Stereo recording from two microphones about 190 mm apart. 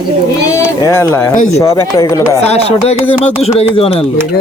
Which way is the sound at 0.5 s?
15° left (ahead or behind).